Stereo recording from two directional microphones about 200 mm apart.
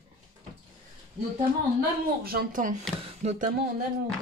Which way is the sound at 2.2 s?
50° right (ahead or behind).